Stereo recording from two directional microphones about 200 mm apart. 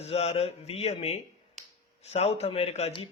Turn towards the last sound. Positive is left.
turn(degrees=30)  # may be behind; listen again after turning